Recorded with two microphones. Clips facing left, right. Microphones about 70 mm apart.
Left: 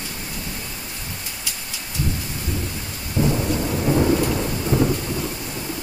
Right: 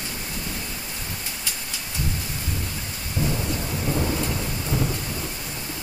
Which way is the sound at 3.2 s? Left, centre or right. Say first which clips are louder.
Left 5 dB; centre.